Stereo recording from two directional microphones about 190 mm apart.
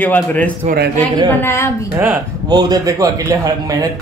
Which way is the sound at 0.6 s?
60° right (ahead or behind).